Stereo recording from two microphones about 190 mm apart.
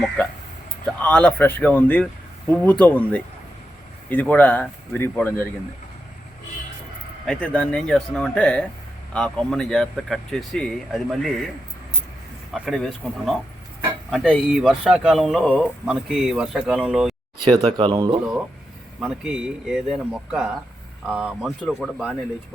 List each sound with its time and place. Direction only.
0.9 s speech: 10° left (ahead or behind)
7.3 s speech: 5° left (ahead or behind)
12.5 s speech: centre (ahead or behind)
17.7 s a man's voice: 25° right (ahead or behind)
18.9 s speech: 5° right (ahead or behind)